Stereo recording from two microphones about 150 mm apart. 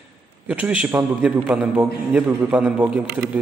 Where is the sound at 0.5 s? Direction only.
10° right (ahead or behind).